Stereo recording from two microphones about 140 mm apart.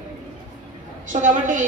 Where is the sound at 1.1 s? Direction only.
65° right (ahead or behind).